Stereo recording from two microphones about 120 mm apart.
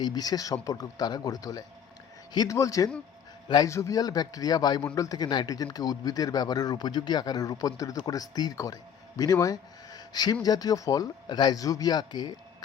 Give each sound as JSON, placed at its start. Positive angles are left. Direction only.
{"t": 0.0, "sound": "a man's voice", "side_deg": 35}